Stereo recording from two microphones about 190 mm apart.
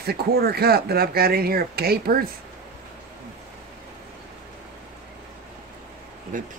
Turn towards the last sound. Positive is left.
turn(degrees=-45)  # may be behind; listen again after turning